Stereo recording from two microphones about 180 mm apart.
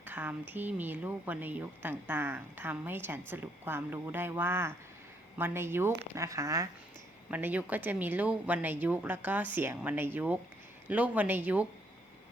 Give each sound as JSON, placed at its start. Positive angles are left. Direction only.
{"t": 0.0, "sound": "speech", "side_deg": -10}